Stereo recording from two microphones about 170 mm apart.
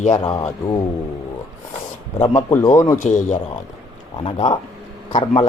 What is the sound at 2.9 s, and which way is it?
Speech, 45° left (ahead or behind).